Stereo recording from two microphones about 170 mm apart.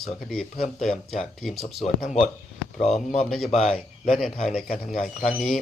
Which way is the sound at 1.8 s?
40° left (ahead or behind).